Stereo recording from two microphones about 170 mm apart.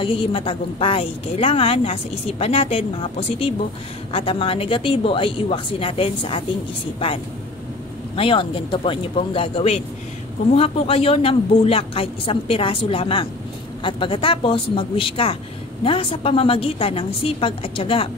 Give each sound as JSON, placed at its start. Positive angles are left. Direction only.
{"t": 0.0, "sound": "a woman's voice", "side_deg": 30}
{"t": 8.2, "sound": "a woman's voice", "side_deg": 30}